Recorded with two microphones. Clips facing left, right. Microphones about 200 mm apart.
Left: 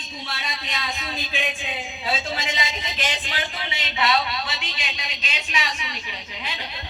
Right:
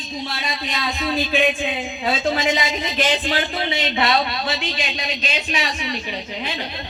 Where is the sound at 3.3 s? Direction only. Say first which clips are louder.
Right 9 dB; 35° right (ahead or behind).